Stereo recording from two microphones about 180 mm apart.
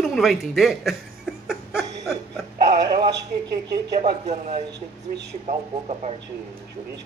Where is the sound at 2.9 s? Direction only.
25° right (ahead or behind).